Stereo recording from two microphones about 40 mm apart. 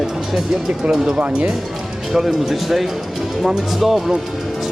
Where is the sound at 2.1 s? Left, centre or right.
Centre.